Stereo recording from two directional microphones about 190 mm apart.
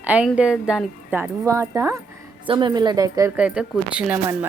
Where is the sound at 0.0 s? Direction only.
10° right (ahead or behind).